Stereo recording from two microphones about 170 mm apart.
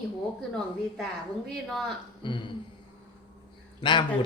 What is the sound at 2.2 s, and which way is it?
Speech, 30° left (ahead or behind).